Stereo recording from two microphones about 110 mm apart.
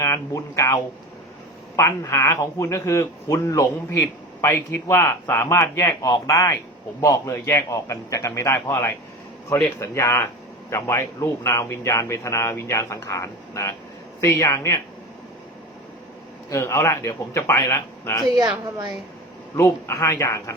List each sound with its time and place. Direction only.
0.0 s a man's voice: 25° left (ahead or behind)
16.5 s a man's voice: 30° left (ahead or behind)
18.4 s a woman's voice: 30° right (ahead or behind)
19.5 s a man's voice: 25° left (ahead or behind)